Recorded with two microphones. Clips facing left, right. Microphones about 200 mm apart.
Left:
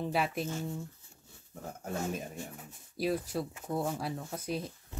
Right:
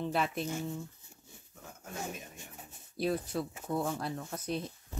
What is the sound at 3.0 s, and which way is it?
Speech, 5° left (ahead or behind).